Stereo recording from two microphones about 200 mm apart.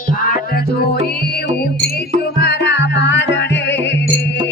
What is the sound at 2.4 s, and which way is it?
Music, 55° left (ahead or behind).